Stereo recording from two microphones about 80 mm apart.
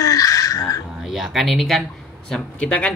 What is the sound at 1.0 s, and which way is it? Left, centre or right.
Speech, centre.